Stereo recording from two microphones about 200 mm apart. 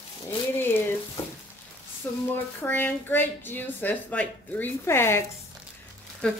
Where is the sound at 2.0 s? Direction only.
10° left (ahead or behind).